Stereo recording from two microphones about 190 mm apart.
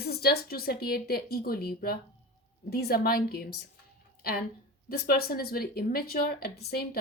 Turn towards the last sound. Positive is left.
turn(degrees=55)  # may be behind; listen again after turning